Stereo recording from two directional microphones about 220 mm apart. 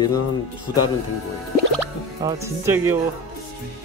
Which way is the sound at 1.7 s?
15° right (ahead or behind).